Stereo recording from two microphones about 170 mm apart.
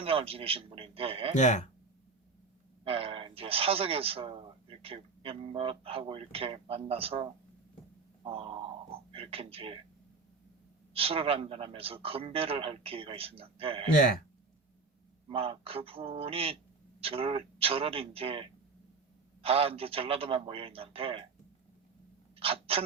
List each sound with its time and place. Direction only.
0.0 s speech: 35° right (ahead or behind)
1.4 s speech: 45° left (ahead or behind)
2.8 s speech: 35° right (ahead or behind)
10.9 s speech: 35° right (ahead or behind)
15.3 s speech: 35° right (ahead or behind)
19.5 s speech: 35° right (ahead or behind)
22.4 s a sound: 35° right (ahead or behind)